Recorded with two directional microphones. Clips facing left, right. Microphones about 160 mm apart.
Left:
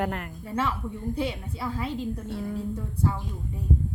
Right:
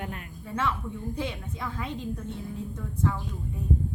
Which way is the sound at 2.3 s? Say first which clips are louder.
Left 5 dB; 70° left (ahead or behind).